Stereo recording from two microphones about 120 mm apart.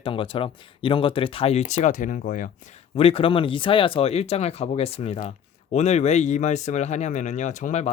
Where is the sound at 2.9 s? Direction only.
50° left (ahead or behind); by 7.9 s 85° left.